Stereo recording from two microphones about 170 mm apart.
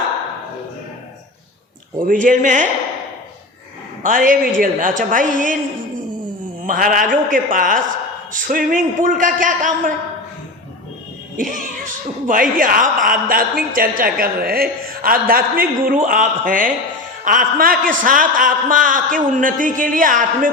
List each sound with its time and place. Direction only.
2.0 s a man's voice: 55° right (ahead or behind)
4.0 s a man's voice: 50° right (ahead or behind)
6.7 s a man's voice: 55° right (ahead or behind)
11.3 s a man's voice: 50° right (ahead or behind)